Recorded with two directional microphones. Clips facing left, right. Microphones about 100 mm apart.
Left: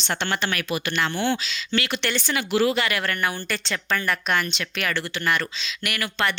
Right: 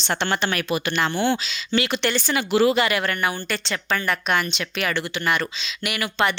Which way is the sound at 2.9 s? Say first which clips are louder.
Right 2 dB; 10° right (ahead or behind).